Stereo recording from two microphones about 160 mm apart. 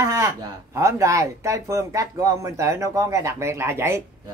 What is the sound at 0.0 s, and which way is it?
Speech, 20° right (ahead or behind).